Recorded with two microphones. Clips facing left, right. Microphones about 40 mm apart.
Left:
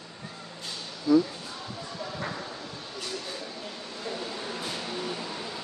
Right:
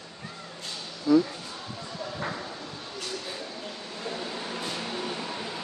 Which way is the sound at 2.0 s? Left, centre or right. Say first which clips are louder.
Right 2 dB; centre.